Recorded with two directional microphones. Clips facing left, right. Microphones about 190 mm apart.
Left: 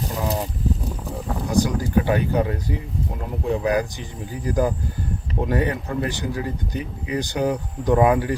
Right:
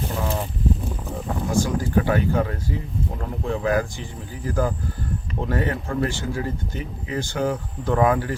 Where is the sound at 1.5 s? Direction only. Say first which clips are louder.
Left 2 dB; 15° left (ahead or behind).